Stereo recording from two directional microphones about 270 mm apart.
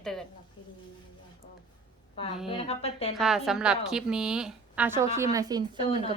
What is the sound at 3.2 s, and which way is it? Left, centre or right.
A woman's voice, centre.